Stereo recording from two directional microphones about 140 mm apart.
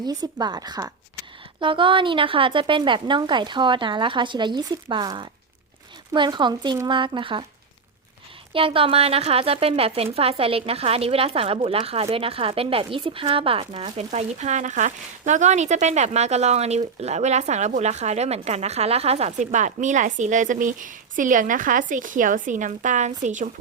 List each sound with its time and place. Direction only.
0.0 s a woman's voice: 30° right (ahead or behind)
8.5 s speech: 40° right (ahead or behind); by 23.5 s 65° right (ahead or behind)